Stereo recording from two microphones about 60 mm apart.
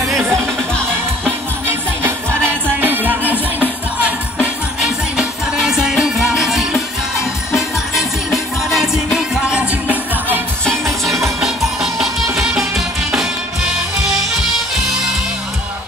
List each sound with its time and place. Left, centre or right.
0.0 s music: centre
1.7 s music: right
4.7 s music: centre
8.6 s music: centre; by 10.4 s right
11.4 s music: centre